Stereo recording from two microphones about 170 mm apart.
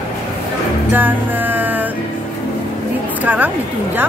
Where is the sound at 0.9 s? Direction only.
10° right (ahead or behind).